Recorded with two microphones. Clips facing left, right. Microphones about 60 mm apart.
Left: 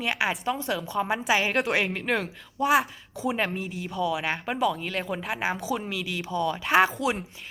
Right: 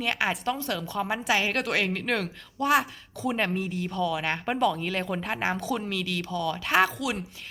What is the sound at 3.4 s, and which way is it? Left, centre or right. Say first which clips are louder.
A woman's voice: right 1 dB; centre.